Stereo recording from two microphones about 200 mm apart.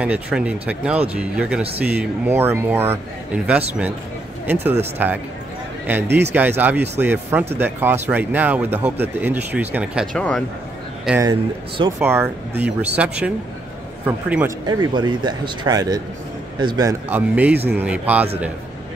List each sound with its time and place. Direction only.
0.0 s speech: 5° right (ahead or behind)
6.0 s speech: 55° right (ahead or behind)
6.3 s speech: 10° right (ahead or behind)
10.1 s speech: 5° left (ahead or behind)
11.1 s speech: 15° right (ahead or behind)
14.7 s speech: 20° right (ahead or behind)
17.1 s speech: 10° right (ahead or behind)